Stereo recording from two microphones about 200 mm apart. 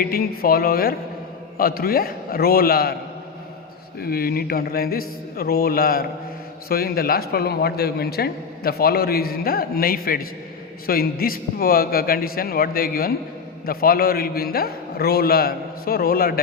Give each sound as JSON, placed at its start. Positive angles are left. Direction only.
{"t": 0.0, "sound": "a man's voice", "side_deg": 50}
{"t": 4.0, "sound": "a man's voice", "side_deg": 50}